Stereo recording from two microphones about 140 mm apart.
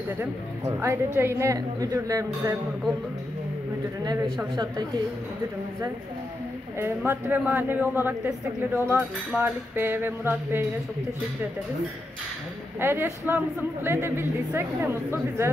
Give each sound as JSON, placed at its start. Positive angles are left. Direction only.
{"t": 0.2, "sound": "a woman's voice", "side_deg": -15}
{"t": 4.6, "sound": "a woman's voice", "side_deg": -30}
{"t": 7.1, "sound": "a woman's voice", "side_deg": -15}
{"t": 12.8, "sound": "a woman's voice", "side_deg": -15}